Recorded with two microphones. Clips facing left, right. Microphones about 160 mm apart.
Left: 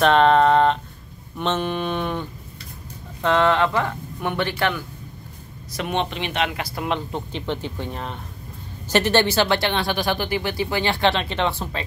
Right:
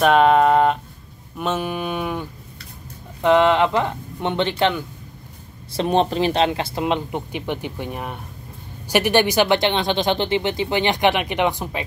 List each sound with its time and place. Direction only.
0.0 s speech: 10° right (ahead or behind)
5.7 s speech: 30° right (ahead or behind); by 11.8 s 15° right (ahead or behind)